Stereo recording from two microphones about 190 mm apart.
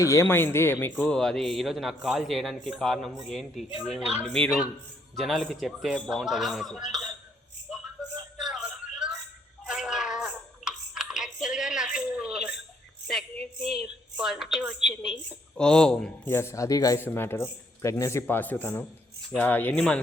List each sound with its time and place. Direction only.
0.0 s a woman's voice: 15° left (ahead or behind); by 4.0 s centre (ahead or behind)
5.1 s a woman's voice: centre (ahead or behind)
8.4 s a sound: centre (ahead or behind)
13.1 s a woman's voice: centre (ahead or behind)